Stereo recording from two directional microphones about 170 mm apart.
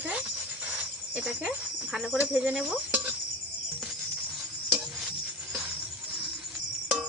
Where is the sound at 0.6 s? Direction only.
10° right (ahead or behind).